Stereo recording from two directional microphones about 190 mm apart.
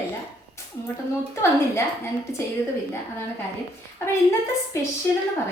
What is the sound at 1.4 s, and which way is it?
A woman's voice, 15° left (ahead or behind).